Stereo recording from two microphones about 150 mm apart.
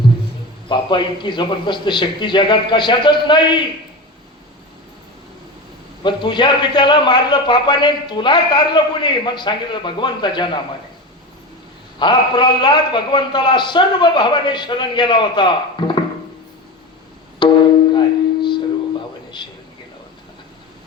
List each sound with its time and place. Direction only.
0.7 s a man's voice: 30° left (ahead or behind)
6.0 s a man's voice: 30° left (ahead or behind)
11.9 s a man's voice: 30° left (ahead or behind)
17.4 s music: 30° left (ahead or behind)